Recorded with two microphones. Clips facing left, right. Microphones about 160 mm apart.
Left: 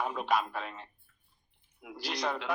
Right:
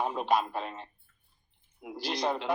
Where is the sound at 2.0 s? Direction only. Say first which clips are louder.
Right 3 dB; 25° right (ahead or behind).